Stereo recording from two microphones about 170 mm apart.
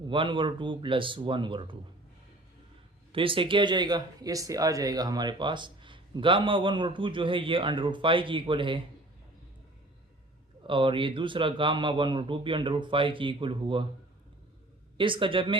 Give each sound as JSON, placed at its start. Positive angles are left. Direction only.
{"t": 0.1, "sound": "speech", "side_deg": -30}
{"t": 3.1, "sound": "speech", "side_deg": -30}
{"t": 10.7, "sound": "speech", "side_deg": -30}
{"t": 14.9, "sound": "speech", "side_deg": -30}